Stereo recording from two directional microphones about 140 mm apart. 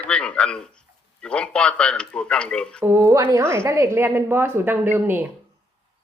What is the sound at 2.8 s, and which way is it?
A woman's voice, 20° right (ahead or behind).